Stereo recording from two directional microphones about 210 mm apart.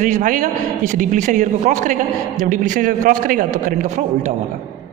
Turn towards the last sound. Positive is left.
turn(degrees=-40)  # may be behind; listen again after turning